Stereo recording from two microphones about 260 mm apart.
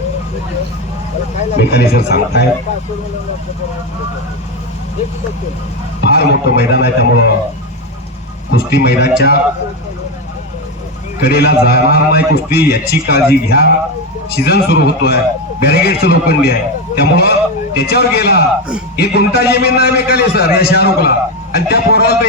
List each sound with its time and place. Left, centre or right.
1.7 s a man's voice: left
6.0 s a man's voice: left
8.4 s a man's voice: left
11.2 s a man's voice: left